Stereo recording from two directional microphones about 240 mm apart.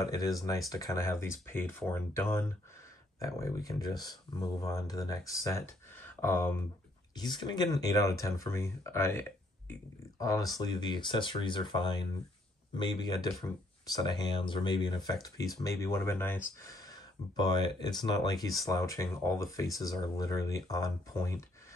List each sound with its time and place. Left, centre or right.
0.0 s speech: centre